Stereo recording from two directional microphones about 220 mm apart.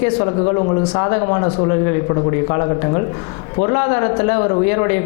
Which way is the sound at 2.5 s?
25° left (ahead or behind).